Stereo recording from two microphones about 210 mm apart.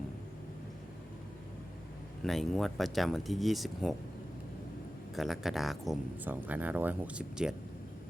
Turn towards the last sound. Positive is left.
turn(degrees=-5)  # may be behind; listen again after turning